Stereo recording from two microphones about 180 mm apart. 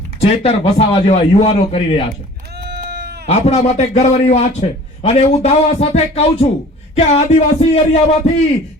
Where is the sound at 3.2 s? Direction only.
40° left (ahead or behind).